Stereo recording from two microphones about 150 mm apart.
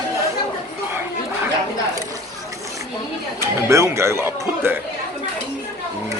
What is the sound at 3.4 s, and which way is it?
Speech, 20° right (ahead or behind).